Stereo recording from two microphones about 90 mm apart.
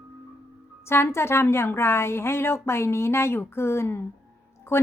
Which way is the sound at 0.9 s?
30° left (ahead or behind).